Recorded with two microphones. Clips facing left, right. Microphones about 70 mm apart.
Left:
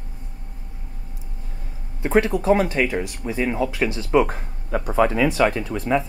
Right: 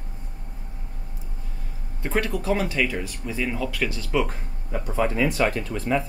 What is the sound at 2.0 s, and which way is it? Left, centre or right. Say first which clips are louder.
Speech: left 7 dB; left.